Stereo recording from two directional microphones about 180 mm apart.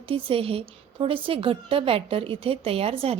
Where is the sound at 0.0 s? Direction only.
30° right (ahead or behind).